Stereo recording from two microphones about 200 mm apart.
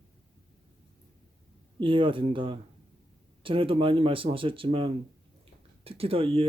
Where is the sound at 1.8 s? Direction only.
25° right (ahead or behind).